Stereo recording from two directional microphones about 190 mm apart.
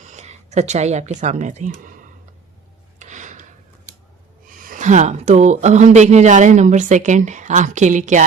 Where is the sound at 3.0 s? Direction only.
40° right (ahead or behind).